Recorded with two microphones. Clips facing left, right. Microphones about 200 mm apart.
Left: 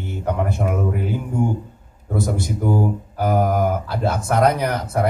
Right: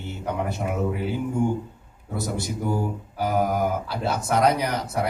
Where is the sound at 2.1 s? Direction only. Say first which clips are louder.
Left 5 dB; 50° left (ahead or behind).